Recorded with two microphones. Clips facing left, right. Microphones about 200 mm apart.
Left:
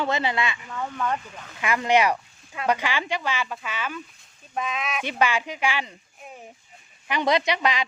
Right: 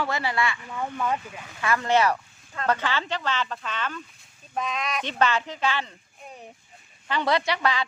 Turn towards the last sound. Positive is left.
turn(degrees=15)  # may be behind; listen again after turning